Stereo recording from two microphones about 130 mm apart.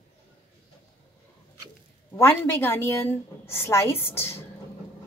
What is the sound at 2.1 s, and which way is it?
A woman's voice, 15° left (ahead or behind).